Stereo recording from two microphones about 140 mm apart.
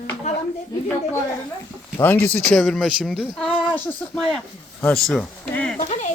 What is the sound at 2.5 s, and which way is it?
Speech, centre (ahead or behind).